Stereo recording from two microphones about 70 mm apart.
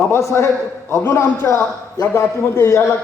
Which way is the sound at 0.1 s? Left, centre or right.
Left.